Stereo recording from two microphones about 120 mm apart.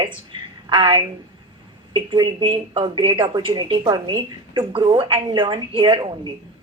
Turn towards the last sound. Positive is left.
turn(degrees=-40)  # may be behind; listen again after turning